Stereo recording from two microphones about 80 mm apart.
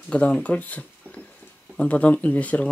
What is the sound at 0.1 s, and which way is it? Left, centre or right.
Speech, centre.